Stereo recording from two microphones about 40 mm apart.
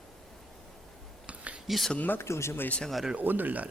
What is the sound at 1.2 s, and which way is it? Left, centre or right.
Whispering, right.